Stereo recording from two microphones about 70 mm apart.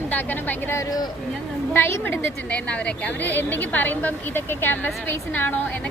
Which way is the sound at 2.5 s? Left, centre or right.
Centre.